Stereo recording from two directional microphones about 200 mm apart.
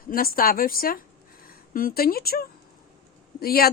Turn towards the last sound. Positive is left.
turn(degrees=50)  # may be behind; listen again after turning